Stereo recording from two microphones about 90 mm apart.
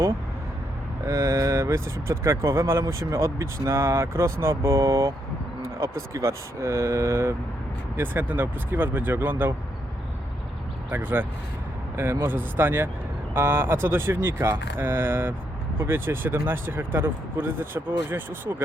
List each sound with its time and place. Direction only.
1.0 s speech: 35° right (ahead or behind)
10.9 s speech: 20° right (ahead or behind)